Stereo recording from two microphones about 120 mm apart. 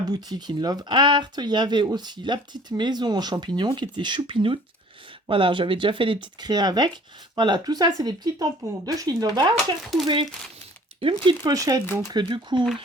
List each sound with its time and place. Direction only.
0.1 s speech: 35° right (ahead or behind)
11.0 s speech: 40° right (ahead or behind)
11.5 s speech: 30° right (ahead or behind)
12.1 s speech: 40° right (ahead or behind)